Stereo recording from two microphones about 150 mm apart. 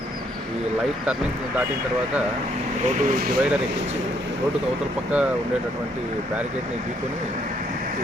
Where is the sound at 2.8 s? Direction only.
70° right (ahead or behind).